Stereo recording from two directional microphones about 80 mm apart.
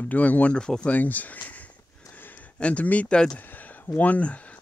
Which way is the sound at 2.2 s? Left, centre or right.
Left.